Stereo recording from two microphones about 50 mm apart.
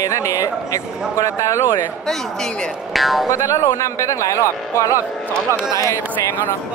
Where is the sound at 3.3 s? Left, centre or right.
Left.